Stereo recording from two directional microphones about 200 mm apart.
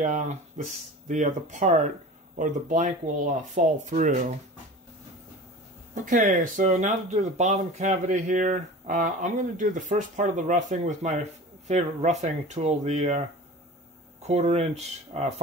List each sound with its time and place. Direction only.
0.0 s speech: 40° right (ahead or behind)
5.9 s speech: 40° right (ahead or behind)
14.2 s speech: 30° right (ahead or behind)